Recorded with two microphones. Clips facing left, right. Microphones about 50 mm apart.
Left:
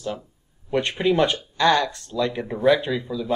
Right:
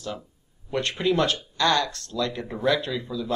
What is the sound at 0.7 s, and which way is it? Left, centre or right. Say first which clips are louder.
Speech: left 3 dB; centre.